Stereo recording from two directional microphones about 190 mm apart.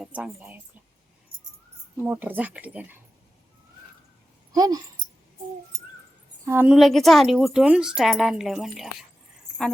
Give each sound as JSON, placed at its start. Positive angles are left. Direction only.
{"t": 0.0, "sound": "speech", "side_deg": -5}
{"t": 2.0, "sound": "speech", "side_deg": -10}
{"t": 4.5, "sound": "speech", "side_deg": -20}
{"t": 6.4, "sound": "speech", "side_deg": -10}
{"t": 6.7, "sound": "a woman's voice", "side_deg": 0}